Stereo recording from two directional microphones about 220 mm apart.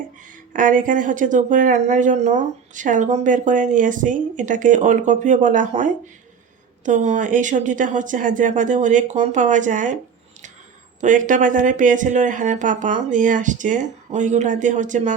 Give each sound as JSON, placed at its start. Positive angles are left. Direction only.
{"t": 0.3, "sound": "speech", "side_deg": -35}
{"t": 11.0, "sound": "speech", "side_deg": -35}